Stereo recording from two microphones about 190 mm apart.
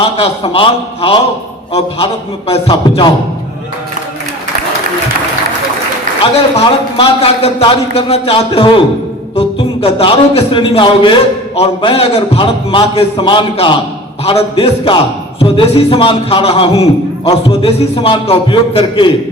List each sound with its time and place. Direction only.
0.0 s a man's voice: 30° left (ahead or behind)
2.5 s a man's voice: 30° left (ahead or behind)
6.3 s a man's voice: 30° left (ahead or behind)